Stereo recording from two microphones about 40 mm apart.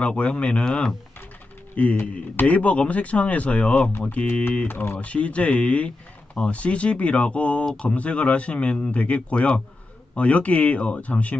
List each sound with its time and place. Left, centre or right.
0.0 s speech: left
1.8 s speech: left
4.6 s speech: left
5.0 s speech: left